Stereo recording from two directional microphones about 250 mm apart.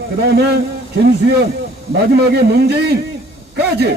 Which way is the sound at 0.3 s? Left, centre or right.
Right.